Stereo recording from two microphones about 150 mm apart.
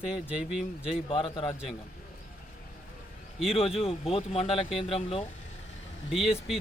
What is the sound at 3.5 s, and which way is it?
A man's voice, 40° left (ahead or behind).